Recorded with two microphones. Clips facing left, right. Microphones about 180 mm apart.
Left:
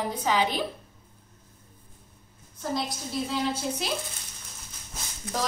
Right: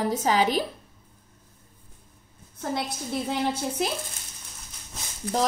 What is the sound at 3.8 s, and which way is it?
Speech, 50° right (ahead or behind).